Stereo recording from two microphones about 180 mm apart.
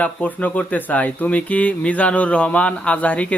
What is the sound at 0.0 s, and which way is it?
Speech, 10° left (ahead or behind).